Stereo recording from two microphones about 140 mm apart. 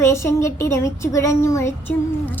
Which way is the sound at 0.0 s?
20° left (ahead or behind).